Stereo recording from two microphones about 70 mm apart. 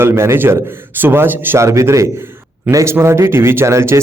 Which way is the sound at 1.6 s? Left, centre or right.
Right.